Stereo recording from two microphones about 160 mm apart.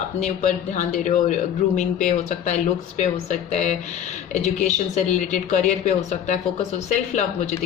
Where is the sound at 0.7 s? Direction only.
50° left (ahead or behind).